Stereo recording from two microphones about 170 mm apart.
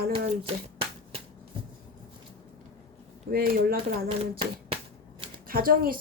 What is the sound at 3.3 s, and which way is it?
Speech, 60° right (ahead or behind).